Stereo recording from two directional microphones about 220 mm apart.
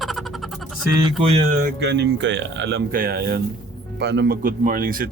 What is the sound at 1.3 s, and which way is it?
Speech, 40° right (ahead or behind).